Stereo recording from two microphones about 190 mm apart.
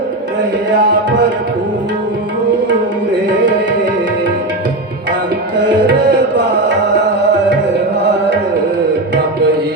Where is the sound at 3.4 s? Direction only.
70° right (ahead or behind).